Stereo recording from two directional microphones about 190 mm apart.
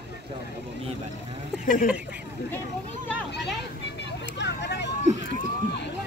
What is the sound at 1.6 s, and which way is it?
Speech, 45° left (ahead or behind).